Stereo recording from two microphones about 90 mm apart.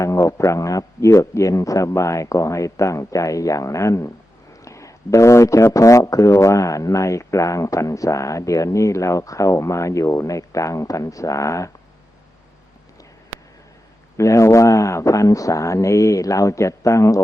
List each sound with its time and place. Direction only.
0.0 s speech: 35° left (ahead or behind)
14.2 s speech: 35° left (ahead or behind)